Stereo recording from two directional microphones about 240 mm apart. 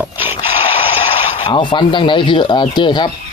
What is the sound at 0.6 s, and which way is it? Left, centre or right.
Speech, left.